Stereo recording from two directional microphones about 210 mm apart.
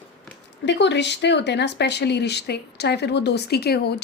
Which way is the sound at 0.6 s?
55° left (ahead or behind).